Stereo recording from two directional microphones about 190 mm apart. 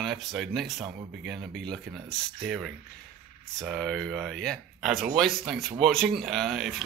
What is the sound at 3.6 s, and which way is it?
Speech, 5° left (ahead or behind).